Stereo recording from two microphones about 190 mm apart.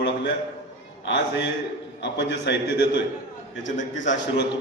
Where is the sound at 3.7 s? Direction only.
75° left (ahead or behind).